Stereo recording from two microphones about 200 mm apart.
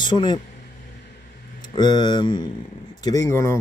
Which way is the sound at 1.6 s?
20° left (ahead or behind).